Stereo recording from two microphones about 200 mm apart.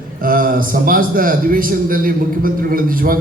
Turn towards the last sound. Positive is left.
turn(degrees=-45)  # may be behind; listen again after turning